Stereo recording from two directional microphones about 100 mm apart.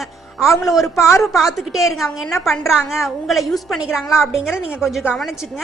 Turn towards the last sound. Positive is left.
turn(degrees=-5)  # may be behind; listen again after turning